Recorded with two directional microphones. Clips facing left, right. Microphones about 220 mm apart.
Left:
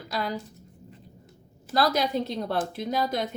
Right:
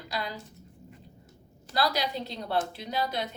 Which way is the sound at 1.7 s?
50° left (ahead or behind).